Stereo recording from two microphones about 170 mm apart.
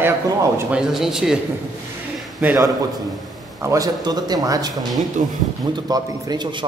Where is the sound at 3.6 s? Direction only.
20° right (ahead or behind).